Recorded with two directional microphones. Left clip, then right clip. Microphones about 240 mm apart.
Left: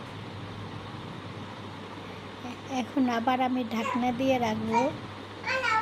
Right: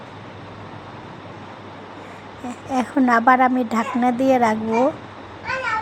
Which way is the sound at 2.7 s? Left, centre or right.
Right.